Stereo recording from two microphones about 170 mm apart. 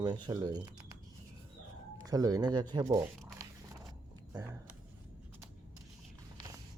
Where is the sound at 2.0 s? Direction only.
20° right (ahead or behind).